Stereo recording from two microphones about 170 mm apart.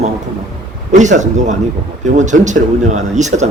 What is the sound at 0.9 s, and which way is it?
Speech, 45° right (ahead or behind).